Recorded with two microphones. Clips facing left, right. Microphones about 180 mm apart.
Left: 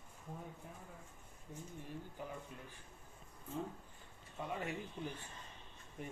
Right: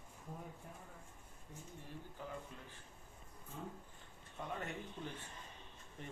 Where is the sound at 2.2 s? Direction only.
15° left (ahead or behind).